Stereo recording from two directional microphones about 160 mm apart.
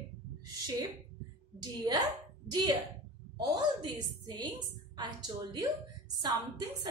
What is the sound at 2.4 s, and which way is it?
Speech, 25° right (ahead or behind).